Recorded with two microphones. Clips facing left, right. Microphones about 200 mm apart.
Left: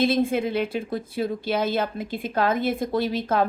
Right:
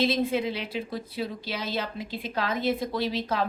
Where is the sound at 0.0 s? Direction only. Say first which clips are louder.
Left 4 dB; 50° left (ahead or behind).